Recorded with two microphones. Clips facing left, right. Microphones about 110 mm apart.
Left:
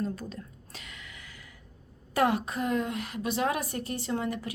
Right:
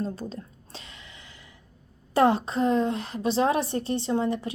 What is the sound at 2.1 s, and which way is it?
A woman's voice, 30° right (ahead or behind).